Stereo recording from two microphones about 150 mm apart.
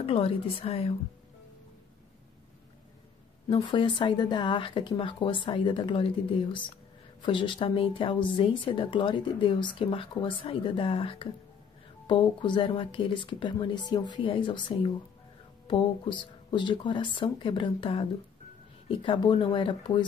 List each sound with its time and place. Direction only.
0.0 s a woman's voice: 40° left (ahead or behind)
3.4 s a woman's voice: 35° left (ahead or behind)